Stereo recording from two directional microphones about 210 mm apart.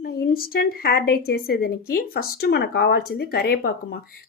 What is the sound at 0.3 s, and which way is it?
Speech, 45° left (ahead or behind).